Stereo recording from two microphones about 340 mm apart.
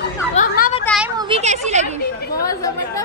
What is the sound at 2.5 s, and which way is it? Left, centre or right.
Speech, centre.